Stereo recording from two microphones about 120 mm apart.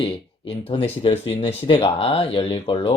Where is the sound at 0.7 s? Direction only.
50° left (ahead or behind).